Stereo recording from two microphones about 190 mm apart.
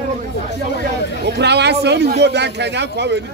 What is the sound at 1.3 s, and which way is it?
A man's voice, 65° right (ahead or behind).